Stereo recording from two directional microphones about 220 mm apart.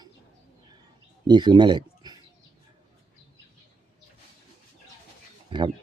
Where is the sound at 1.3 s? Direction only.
20° right (ahead or behind).